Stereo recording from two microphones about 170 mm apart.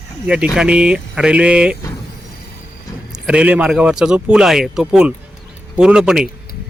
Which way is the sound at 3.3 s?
5° right (ahead or behind).